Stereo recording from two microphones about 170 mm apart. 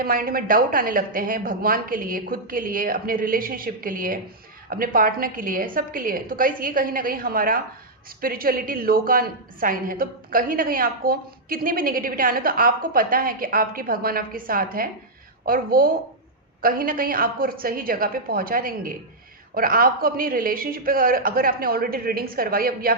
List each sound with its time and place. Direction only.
0.0 s a woman's voice: 60° right (ahead or behind)